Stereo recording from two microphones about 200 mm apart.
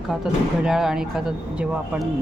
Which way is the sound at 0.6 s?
5° right (ahead or behind).